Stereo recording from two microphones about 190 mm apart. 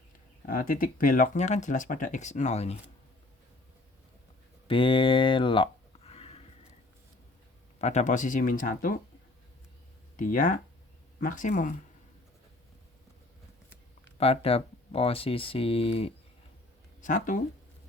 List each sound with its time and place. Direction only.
0.4 s speech: 50° left (ahead or behind)
4.7 s speech: 25° left (ahead or behind)
7.8 s speech: 35° left (ahead or behind)
10.2 s speech: 45° left (ahead or behind)
14.2 s speech: 30° left (ahead or behind)
17.0 s speech: 45° left (ahead or behind)